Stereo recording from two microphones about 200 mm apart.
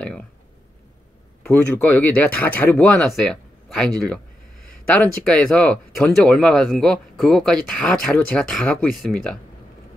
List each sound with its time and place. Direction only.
0.0 s speech: 5° left (ahead or behind)
1.4 s speech: 10° left (ahead or behind)